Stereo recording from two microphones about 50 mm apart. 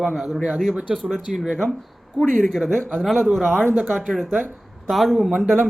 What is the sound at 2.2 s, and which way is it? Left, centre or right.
Speech, centre.